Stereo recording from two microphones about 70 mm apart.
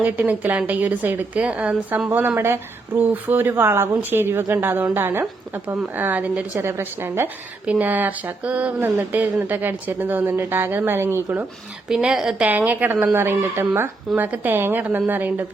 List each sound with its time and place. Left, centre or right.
0.0 s speech: right
2.0 s speech: right
5.2 s speech: right
6.6 s speech: right
7.7 s speech: right
11.9 s a woman's voice: centre
12.5 s speech: right